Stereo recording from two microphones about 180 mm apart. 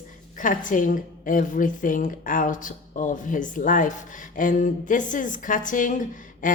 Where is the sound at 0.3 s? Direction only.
45° left (ahead or behind).